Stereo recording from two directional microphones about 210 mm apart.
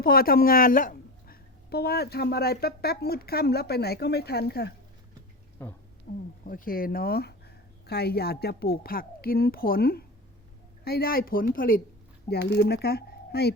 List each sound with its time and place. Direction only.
0.0 s a woman's voice: 45° left (ahead or behind)
5.6 s speech: 10° left (ahead or behind)
6.1 s a woman's voice: 35° left (ahead or behind)
12.3 s speech: 50° left (ahead or behind)